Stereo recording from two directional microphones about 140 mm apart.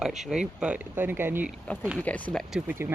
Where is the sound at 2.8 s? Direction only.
15° right (ahead or behind).